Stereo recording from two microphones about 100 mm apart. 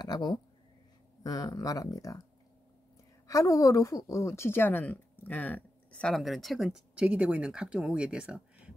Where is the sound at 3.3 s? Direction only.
35° left (ahead or behind); by 6.2 s 10° left (ahead or behind).